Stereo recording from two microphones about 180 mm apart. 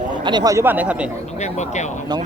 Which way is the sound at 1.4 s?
40° left (ahead or behind).